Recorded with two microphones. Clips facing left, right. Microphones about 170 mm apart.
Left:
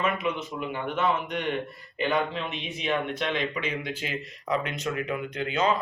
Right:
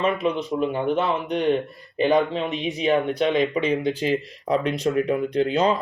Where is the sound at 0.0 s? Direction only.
30° right (ahead or behind).